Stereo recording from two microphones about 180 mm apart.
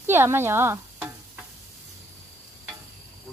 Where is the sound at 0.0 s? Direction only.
10° right (ahead or behind).